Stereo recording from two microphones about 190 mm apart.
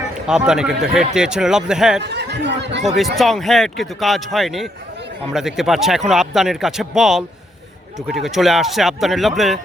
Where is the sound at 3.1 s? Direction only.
Centre (ahead or behind).